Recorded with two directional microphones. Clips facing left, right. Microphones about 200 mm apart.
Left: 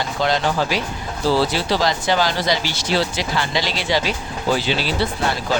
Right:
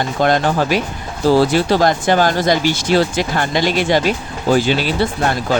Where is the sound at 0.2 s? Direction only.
50° right (ahead or behind).